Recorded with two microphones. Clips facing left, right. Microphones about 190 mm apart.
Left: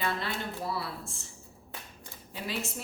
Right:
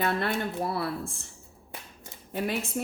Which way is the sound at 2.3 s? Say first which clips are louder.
Right 8 dB; 55° right (ahead or behind).